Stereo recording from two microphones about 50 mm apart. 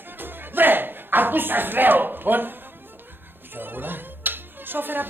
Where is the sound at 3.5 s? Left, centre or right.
Right.